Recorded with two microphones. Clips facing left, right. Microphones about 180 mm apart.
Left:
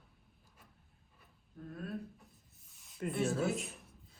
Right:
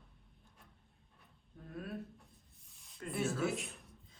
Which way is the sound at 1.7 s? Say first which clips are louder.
Left 1 dB; centre (ahead or behind).